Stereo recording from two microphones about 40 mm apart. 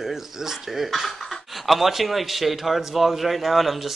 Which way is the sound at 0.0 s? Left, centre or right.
Centre.